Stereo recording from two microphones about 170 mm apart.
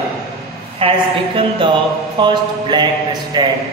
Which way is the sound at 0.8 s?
35° right (ahead or behind).